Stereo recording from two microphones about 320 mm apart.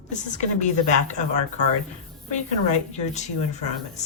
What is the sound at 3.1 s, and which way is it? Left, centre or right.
Speech, left.